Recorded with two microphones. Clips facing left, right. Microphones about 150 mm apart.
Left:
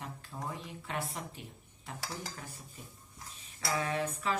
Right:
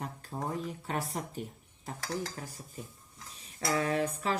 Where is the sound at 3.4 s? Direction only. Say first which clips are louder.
Right 4 dB; 40° right (ahead or behind).